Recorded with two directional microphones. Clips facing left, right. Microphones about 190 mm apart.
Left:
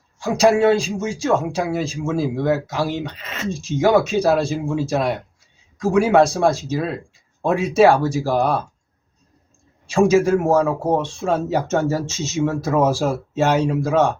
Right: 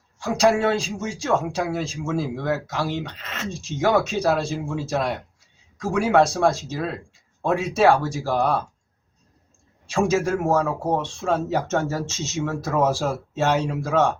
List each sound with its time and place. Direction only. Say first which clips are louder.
0.2 s speech: left 4 dB; 5° left (ahead or behind)
9.8 s speech: left 6 dB; 5° left (ahead or behind)